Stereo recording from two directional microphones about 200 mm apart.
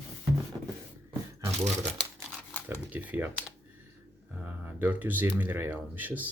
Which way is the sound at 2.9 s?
10° right (ahead or behind).